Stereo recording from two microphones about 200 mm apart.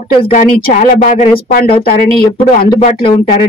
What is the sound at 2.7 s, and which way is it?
Speech, 35° left (ahead or behind).